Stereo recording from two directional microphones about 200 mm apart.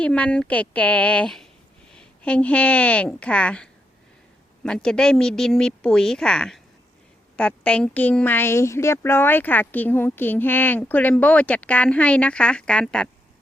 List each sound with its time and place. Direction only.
0.0 s a woman's voice: 5° left (ahead or behind)